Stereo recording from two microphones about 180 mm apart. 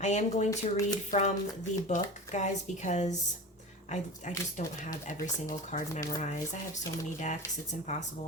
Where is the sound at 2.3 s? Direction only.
40° left (ahead or behind).